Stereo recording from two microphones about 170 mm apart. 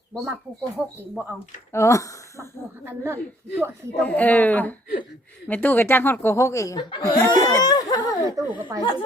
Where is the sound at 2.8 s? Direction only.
15° right (ahead or behind).